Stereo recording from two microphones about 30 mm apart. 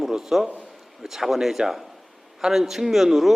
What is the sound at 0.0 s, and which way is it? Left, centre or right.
A man's voice, centre.